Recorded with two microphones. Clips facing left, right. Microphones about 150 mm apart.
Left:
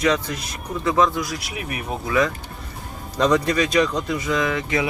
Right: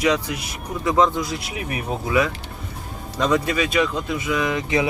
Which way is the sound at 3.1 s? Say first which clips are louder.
Left 2 dB; 5° right (ahead or behind).